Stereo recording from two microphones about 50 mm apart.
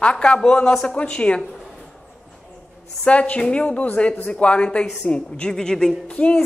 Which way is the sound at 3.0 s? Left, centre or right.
Left.